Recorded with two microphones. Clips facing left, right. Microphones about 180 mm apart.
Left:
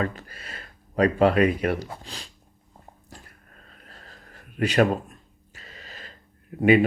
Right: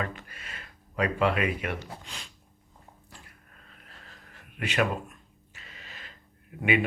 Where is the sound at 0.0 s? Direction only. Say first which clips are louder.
Left 6 dB; 35° left (ahead or behind).